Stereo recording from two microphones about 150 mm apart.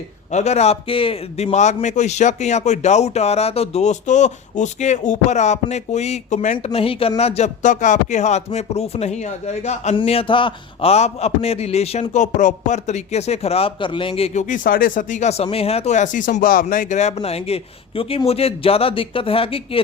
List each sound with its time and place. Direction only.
0.3 s a man's voice: 50° left (ahead or behind)
6.7 s a man's voice: 40° left (ahead or behind)
9.9 s a man's voice: 35° left (ahead or behind)